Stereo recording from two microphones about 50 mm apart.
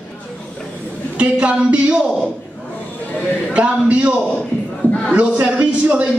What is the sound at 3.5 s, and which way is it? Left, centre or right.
A man's voice, right.